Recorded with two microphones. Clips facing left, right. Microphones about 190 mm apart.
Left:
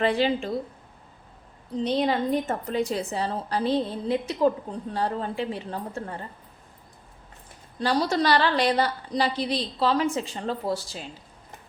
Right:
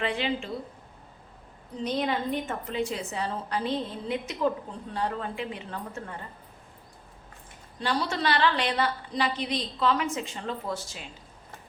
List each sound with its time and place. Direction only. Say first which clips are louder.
0.0 s a woman's voice: left 6 dB; 40° left (ahead or behind)
1.8 s a woman's voice: left 4 dB; 30° left (ahead or behind)
7.8 s a woman's voice: left 5 dB; 40° left (ahead or behind)